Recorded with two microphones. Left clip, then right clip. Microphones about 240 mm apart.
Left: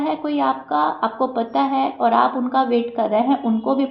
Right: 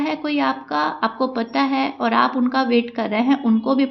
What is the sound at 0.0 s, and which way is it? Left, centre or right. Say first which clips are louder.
Speech: left 1 dB; right.